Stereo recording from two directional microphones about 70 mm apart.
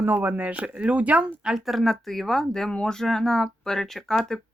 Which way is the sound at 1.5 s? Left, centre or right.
Centre.